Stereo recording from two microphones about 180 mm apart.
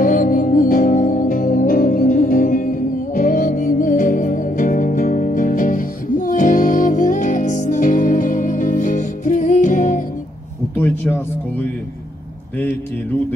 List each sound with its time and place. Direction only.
0.0 s music: 50° left (ahead or behind)